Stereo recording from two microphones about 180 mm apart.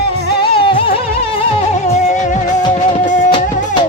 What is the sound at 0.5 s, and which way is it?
Music, 30° left (ahead or behind).